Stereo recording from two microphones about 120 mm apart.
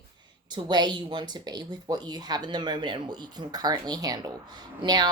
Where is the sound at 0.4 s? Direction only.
35° right (ahead or behind).